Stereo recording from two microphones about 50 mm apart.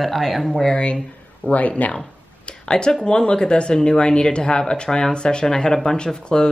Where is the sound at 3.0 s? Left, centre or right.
Centre.